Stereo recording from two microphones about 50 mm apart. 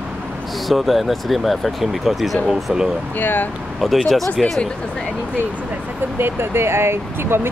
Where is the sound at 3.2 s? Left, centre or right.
Left.